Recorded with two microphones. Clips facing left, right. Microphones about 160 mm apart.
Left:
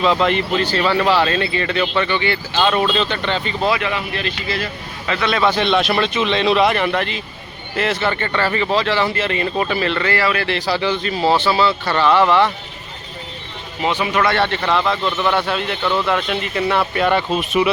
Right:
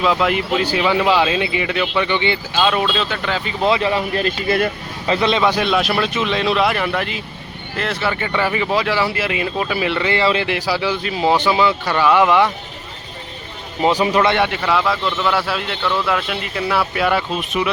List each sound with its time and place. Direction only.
0.0 s speech: 5° right (ahead or behind)
2.0 s speech: 20° right (ahead or behind)
2.6 s a man's voice: 5° right (ahead or behind)
3.6 s speech: 25° right (ahead or behind); by 4.7 s 55° right (ahead or behind)
5.0 s speech: 30° right (ahead or behind)
5.4 s a man's voice: 10° right (ahead or behind)
13.8 s speech: 35° right (ahead or behind)
14.3 s a man's voice: 10° right (ahead or behind)